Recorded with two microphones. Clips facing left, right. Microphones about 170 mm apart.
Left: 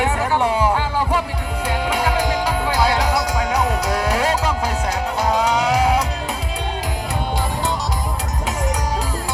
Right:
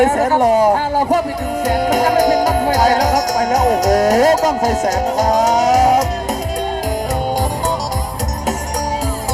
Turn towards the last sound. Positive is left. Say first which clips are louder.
# right 5 dB
turn(degrees=-45)  # may be behind; listen again after turning